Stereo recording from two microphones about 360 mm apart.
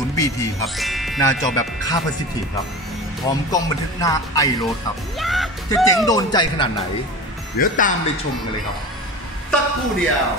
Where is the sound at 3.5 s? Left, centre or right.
Centre.